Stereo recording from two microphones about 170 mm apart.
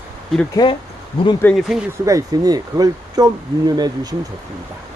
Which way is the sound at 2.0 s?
20° right (ahead or behind).